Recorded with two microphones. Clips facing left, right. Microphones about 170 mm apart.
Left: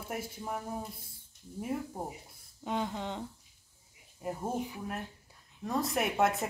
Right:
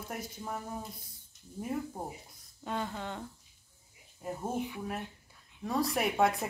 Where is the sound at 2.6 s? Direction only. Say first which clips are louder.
Left 2 dB; 15° left (ahead or behind).